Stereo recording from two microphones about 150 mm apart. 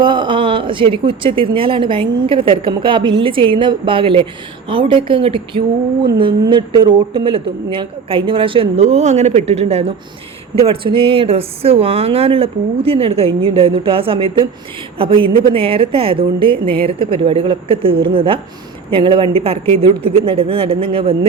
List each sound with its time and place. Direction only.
0.0 s speech: 30° right (ahead or behind)